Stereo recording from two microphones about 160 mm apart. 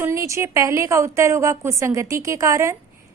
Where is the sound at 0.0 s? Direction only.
20° right (ahead or behind).